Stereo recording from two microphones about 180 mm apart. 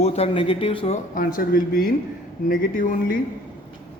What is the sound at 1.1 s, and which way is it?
Speech, 50° left (ahead or behind).